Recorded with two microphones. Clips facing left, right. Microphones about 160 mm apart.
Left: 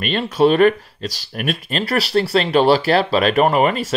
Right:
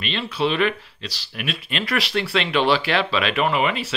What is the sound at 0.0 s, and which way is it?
Speech, 45° left (ahead or behind).